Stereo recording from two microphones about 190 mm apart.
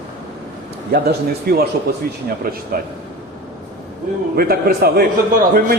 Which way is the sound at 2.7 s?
50° right (ahead or behind).